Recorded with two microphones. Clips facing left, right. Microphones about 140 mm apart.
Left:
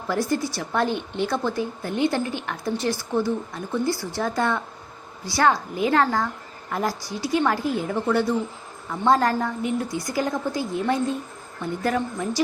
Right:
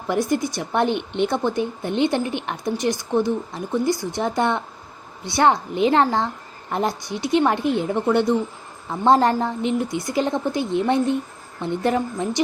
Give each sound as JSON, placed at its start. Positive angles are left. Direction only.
{"t": 0.1, "sound": "a woman's voice", "side_deg": -20}